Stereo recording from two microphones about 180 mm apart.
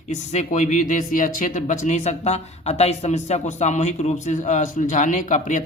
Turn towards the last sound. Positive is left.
turn(degrees=45)  # may be behind; listen again after turning